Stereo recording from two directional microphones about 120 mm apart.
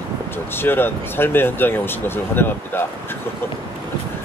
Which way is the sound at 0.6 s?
20° left (ahead or behind).